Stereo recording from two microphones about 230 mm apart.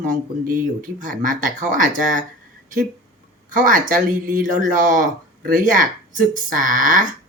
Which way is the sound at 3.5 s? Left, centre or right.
Right.